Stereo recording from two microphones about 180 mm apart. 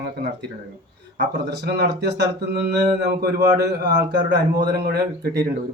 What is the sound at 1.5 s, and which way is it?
Speech, 70° right (ahead or behind).